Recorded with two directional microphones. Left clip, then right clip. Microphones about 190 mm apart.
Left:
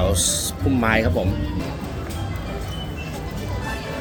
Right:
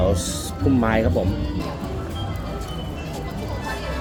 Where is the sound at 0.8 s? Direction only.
20° right (ahead or behind).